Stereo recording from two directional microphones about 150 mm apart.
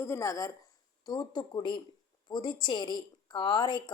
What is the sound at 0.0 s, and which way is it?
A woman's voice, 20° left (ahead or behind).